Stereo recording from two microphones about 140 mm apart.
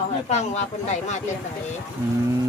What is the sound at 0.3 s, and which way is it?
Speech, 55° left (ahead or behind).